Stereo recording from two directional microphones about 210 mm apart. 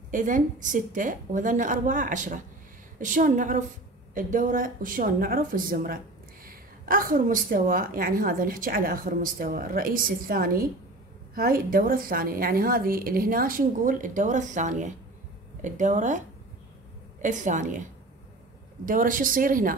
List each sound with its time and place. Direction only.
0.1 s a woman's voice: 40° right (ahead or behind)
18.9 s a woman's voice: 40° right (ahead or behind)